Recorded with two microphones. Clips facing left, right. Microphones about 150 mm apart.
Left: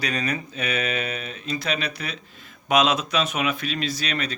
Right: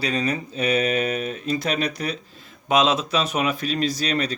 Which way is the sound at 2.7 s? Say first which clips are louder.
Right 1 dB; 25° right (ahead or behind).